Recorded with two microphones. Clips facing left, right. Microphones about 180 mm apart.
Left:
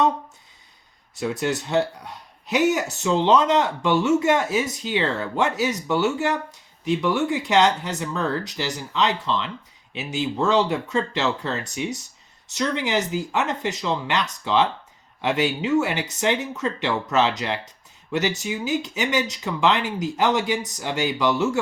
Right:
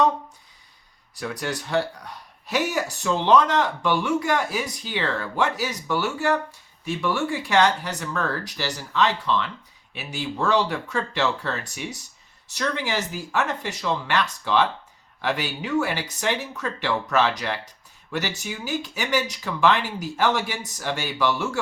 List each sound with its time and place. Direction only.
1.1 s speech: 25° left (ahead or behind)